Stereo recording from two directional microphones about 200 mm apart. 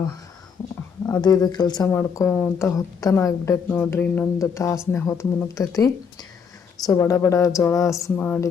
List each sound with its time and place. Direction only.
1.0 s speech: 20° left (ahead or behind)